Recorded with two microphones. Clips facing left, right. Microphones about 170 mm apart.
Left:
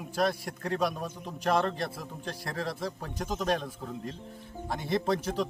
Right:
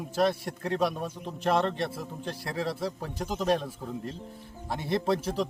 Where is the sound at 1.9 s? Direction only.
25° right (ahead or behind).